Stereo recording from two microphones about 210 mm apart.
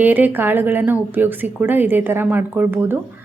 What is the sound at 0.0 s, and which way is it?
A woman's voice, 10° right (ahead or behind).